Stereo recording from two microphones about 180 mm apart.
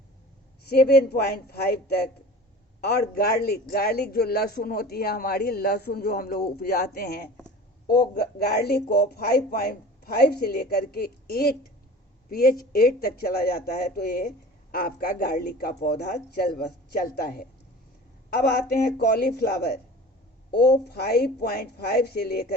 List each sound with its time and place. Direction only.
0.6 s a man's voice: 60° left (ahead or behind)